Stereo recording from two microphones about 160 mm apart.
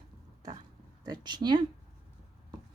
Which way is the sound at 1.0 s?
25° right (ahead or behind).